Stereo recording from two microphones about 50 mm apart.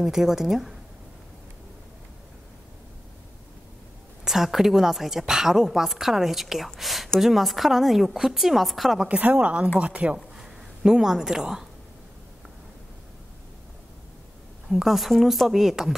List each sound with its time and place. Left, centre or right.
0.0 s a woman's voice: centre
4.2 s a woman's voice: centre
9.1 s speech: right
10.1 s a sound: centre
14.7 s a woman's voice: centre